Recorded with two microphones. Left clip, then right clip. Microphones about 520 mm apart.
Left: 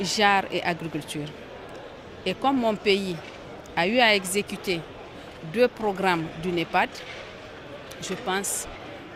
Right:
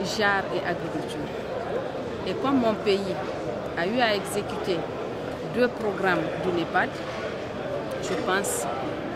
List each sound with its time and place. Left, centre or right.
0.0 s speech: left
2.2 s speech: left